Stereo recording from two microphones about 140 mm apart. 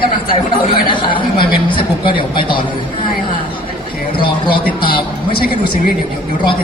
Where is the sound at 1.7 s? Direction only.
35° left (ahead or behind).